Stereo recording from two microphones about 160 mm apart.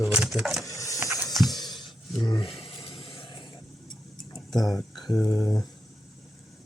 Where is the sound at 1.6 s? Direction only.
25° left (ahead or behind).